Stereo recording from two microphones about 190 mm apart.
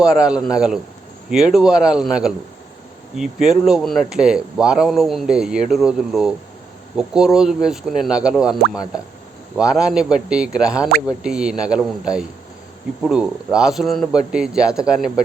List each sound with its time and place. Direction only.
0.0 s speech: 5° right (ahead or behind)